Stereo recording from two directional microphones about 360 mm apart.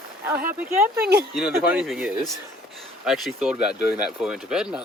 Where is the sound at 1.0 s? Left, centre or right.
Right.